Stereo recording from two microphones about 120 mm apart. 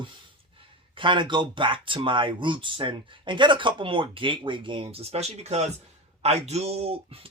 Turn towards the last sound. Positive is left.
turn(degrees=-55)  # may be behind; listen again after turning